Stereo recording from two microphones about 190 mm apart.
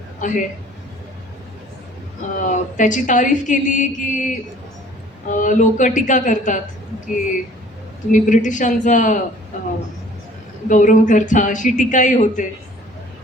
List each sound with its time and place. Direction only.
0.2 s a man's voice: 40° left (ahead or behind)
2.4 s speech: 40° left (ahead or behind)
8.1 s speech: 40° left (ahead or behind)